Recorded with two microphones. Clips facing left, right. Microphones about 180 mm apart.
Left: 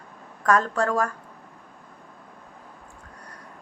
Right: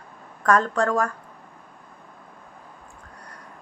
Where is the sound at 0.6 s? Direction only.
10° left (ahead or behind).